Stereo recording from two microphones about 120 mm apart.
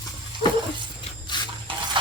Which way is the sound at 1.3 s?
40° left (ahead or behind).